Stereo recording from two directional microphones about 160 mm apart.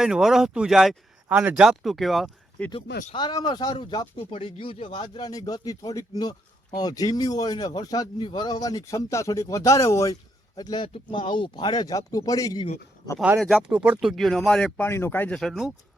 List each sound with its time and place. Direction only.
0.0 s speech: 5° right (ahead or behind)
3.2 s speech: 25° left (ahead or behind)
13.4 s speech: centre (ahead or behind)
13.7 s speech: 10° right (ahead or behind)